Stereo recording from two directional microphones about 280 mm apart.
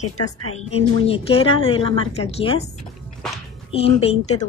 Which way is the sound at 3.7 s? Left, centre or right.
Left.